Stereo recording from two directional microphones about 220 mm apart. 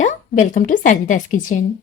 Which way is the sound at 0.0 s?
35° left (ahead or behind).